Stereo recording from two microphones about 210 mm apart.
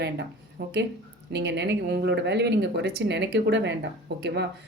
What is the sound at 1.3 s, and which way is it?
A woman's voice, 55° right (ahead or behind).